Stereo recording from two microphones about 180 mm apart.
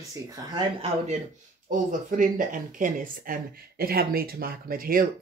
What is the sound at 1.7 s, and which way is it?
Speech, 50° right (ahead or behind).